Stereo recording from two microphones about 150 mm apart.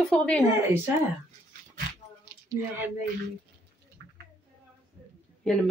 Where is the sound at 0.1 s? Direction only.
5° left (ahead or behind).